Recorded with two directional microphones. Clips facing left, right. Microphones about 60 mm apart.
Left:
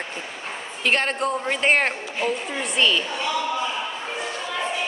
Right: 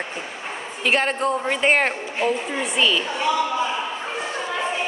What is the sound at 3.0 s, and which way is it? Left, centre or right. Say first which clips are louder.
Speech: right 3 dB; centre.